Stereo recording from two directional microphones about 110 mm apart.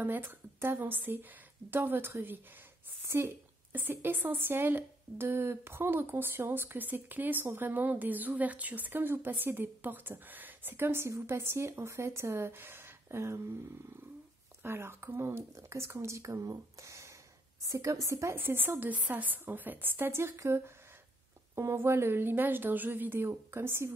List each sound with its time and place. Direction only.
0.0 s a woman's voice: 20° right (ahead or behind)
14.6 s a woman's voice: 20° right (ahead or behind)